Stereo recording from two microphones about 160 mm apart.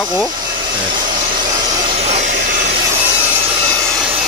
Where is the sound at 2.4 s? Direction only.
60° right (ahead or behind).